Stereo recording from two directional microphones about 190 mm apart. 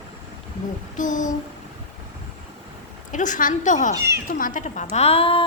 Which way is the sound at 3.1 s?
40° left (ahead or behind).